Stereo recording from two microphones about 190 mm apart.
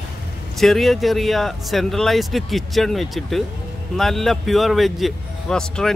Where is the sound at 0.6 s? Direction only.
Centre (ahead or behind).